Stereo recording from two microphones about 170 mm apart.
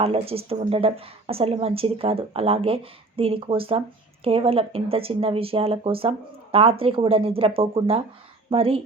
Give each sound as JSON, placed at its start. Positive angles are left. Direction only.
{"t": 0.0, "sound": "speech", "side_deg": -35}